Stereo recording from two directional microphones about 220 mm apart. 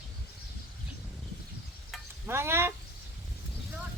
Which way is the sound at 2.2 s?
10° right (ahead or behind).